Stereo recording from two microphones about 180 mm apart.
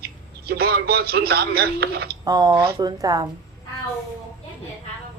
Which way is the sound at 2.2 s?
20° right (ahead or behind).